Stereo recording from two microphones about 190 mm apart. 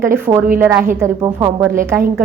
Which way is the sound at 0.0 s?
15° right (ahead or behind).